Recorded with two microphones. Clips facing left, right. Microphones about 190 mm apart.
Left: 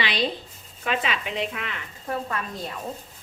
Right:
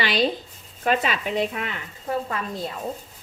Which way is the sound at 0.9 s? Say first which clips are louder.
Right 4 dB; 40° right (ahead or behind).